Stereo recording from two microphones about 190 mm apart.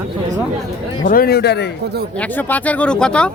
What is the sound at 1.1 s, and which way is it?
Speech, 50° left (ahead or behind).